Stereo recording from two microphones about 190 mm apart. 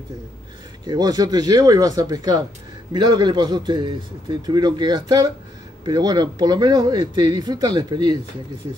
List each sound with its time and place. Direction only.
0.8 s a man's voice: 20° right (ahead or behind)